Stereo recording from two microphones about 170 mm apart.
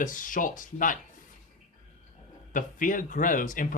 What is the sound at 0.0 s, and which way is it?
Speech, 50° left (ahead or behind).